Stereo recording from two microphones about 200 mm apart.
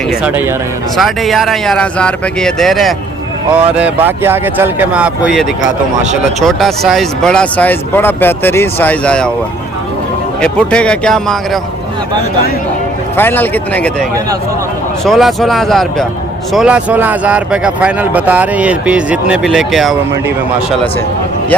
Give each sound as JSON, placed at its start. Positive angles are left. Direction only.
{"t": 0.1, "sound": "speech", "side_deg": -10}
{"t": 10.4, "sound": "speech", "side_deg": 5}
{"t": 13.1, "sound": "speech", "side_deg": 10}